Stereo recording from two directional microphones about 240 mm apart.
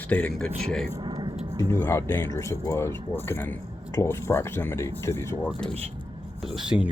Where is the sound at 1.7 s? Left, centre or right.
Centre.